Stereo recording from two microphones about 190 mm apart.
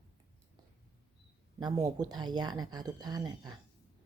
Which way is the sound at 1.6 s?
20° right (ahead or behind).